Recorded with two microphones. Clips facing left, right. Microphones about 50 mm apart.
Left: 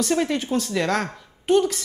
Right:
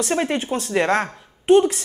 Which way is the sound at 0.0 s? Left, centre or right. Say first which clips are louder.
Right 1 dB; right.